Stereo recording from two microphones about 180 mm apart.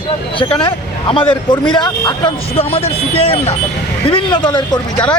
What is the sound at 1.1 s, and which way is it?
Speech, 30° left (ahead or behind).